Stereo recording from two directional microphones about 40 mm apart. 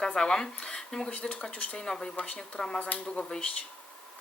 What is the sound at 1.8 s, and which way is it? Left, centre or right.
Speech, centre.